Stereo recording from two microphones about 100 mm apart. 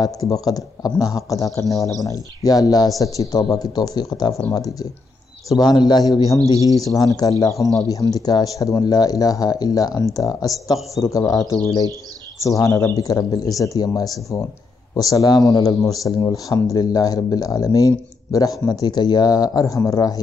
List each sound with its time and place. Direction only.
0.0 s speech: 40° left (ahead or behind)
6.4 s speech: 35° right (ahead or behind)
6.8 s speech: 35° left (ahead or behind)